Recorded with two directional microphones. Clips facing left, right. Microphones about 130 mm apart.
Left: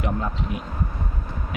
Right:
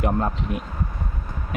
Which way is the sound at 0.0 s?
50° right (ahead or behind).